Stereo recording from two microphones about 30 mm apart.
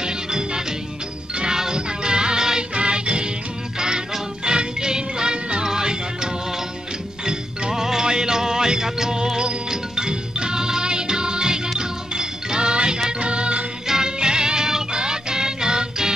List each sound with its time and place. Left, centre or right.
0.0 s music: right
2.7 s music: right
4.5 s music: right
7.7 s music: centre; by 13.7 s right
13.8 s music: right